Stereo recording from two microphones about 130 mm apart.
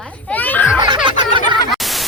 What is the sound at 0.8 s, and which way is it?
Snicker, 35° right (ahead or behind).